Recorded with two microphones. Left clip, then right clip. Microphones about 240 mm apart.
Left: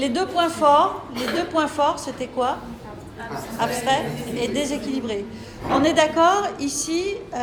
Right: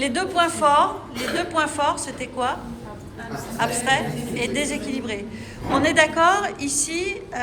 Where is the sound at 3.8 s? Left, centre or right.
Centre.